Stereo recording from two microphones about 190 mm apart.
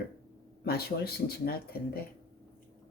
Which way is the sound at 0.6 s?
55° left (ahead or behind).